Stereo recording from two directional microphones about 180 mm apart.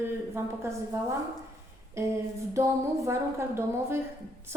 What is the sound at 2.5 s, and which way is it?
A woman's voice, 15° right (ahead or behind).